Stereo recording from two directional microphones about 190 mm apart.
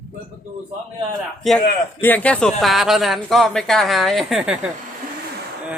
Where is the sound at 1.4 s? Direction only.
Centre (ahead or behind).